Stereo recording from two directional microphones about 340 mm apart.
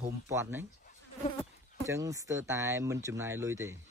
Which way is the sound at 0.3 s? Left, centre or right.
Centre.